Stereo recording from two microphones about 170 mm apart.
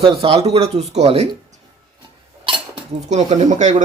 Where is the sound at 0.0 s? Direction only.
35° right (ahead or behind).